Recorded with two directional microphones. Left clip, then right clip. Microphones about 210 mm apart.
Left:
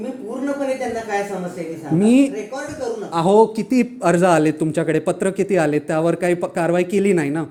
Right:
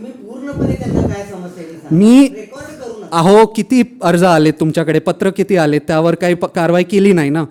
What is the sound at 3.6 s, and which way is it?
A man's voice, 40° right (ahead or behind).